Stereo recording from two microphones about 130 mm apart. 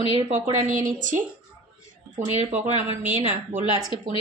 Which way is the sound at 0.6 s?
85° right.